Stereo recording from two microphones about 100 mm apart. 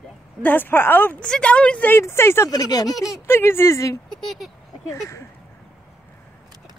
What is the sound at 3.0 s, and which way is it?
Speech, 25° left (ahead or behind).